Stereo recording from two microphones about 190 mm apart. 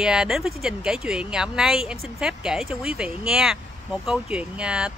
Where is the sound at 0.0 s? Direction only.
5° right (ahead or behind).